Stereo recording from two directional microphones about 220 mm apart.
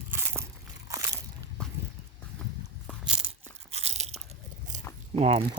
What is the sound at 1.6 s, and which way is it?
Horse, 5° left (ahead or behind).